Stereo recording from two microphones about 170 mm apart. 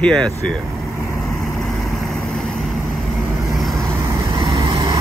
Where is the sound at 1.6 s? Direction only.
Centre (ahead or behind).